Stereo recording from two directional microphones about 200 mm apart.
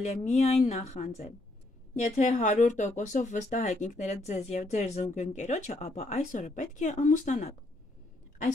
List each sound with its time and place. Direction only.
0.0 s speech: 35° left (ahead or behind)